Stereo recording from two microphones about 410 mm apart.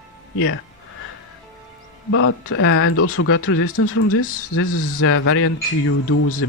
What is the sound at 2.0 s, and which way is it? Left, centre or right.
Speech, left.